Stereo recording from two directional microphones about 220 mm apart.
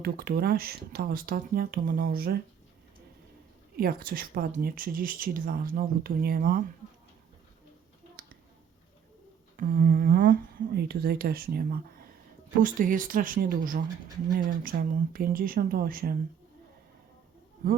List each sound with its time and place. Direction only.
0.0 s speech: 45° right (ahead or behind)
3.8 s a woman's voice: 40° right (ahead or behind)
9.6 s a woman's voice: 40° right (ahead or behind)